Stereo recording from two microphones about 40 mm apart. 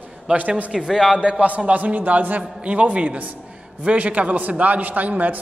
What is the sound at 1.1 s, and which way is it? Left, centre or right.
A man's voice, right.